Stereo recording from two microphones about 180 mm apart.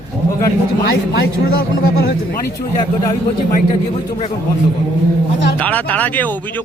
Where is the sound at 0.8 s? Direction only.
60° left (ahead or behind).